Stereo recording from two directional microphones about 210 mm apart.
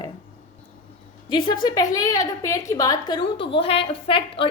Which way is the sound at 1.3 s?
20° left (ahead or behind).